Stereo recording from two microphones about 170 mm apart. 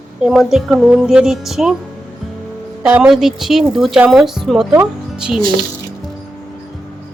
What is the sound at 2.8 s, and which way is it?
Speech, 5° right (ahead or behind).